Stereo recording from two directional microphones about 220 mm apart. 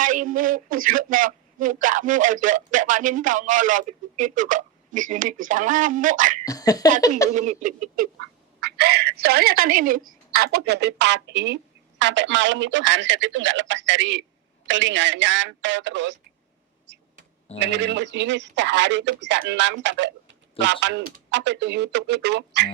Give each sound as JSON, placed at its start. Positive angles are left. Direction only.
{"t": 0.0, "sound": "a man's voice", "side_deg": -35}
{"t": 6.4, "sound": "a sound", "side_deg": 15}
{"t": 7.3, "sound": "a man's voice", "side_deg": -30}
{"t": 8.6, "sound": "a woman's voice", "side_deg": -50}
{"t": 16.9, "sound": "a sound", "side_deg": -55}
{"t": 17.6, "sound": "a woman's voice", "side_deg": -55}